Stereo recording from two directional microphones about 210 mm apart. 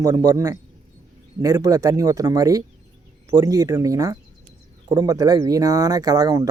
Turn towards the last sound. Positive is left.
turn(degrees=-20)  # may be behind; listen again after turning